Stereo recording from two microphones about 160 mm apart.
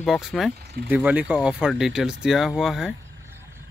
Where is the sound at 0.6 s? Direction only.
90° right.